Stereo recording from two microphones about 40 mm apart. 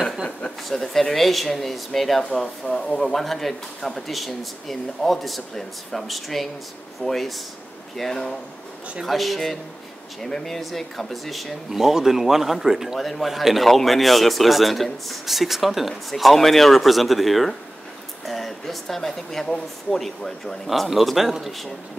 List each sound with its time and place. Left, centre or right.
0.7 s speech: centre
2.4 s speech: left
3.0 s speech: centre
11.7 s speech: centre